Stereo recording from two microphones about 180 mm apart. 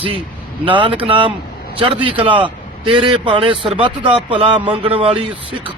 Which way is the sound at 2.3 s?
30° right (ahead or behind).